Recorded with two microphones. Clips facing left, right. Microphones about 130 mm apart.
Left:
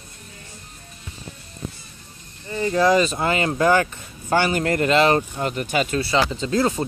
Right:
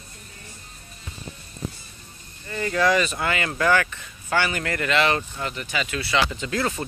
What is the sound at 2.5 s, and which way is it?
Speech, 20° left (ahead or behind).